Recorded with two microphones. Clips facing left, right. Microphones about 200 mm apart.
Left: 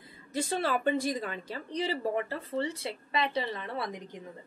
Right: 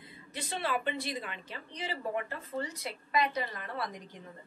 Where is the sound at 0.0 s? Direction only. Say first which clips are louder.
Left 9 dB; 40° left (ahead or behind).